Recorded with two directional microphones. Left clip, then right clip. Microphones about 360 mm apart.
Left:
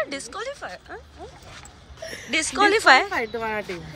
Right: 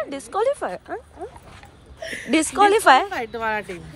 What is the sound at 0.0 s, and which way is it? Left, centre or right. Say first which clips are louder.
Speech: right 7 dB; centre.